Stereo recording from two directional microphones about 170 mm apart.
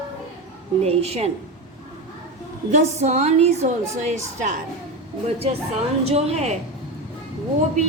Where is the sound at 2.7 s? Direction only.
45° right (ahead or behind).